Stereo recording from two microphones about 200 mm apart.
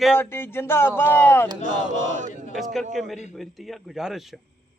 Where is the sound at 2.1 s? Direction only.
40° right (ahead or behind).